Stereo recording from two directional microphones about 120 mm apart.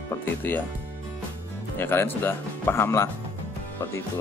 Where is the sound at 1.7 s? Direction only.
20° left (ahead or behind).